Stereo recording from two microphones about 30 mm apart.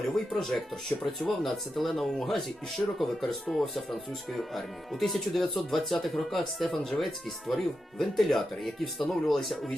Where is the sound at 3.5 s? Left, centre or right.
Centre.